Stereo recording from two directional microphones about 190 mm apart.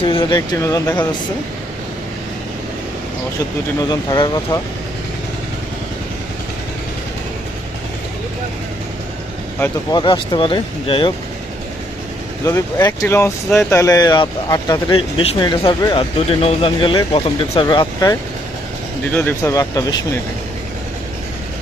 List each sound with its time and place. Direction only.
0.0 s speech: 25° left (ahead or behind)
3.8 s speech: 20° left (ahead or behind)
9.9 s speech: 25° left (ahead or behind)
12.5 s speech: 15° left (ahead or behind)